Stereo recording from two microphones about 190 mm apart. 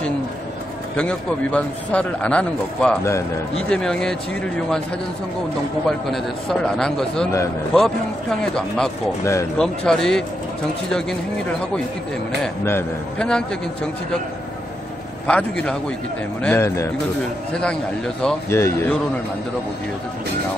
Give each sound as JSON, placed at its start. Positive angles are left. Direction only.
{"t": 0.9, "sound": "a man's voice", "side_deg": 5}
{"t": 5.9, "sound": "a man's voice", "side_deg": 0}
{"t": 9.2, "sound": "a man's voice", "side_deg": 15}
{"t": 9.6, "sound": "a man's voice", "side_deg": 5}
{"t": 12.6, "sound": "a man's voice", "side_deg": 10}
{"t": 15.2, "sound": "a man's voice", "side_deg": 5}
{"t": 17.6, "sound": "a man's voice", "side_deg": 5}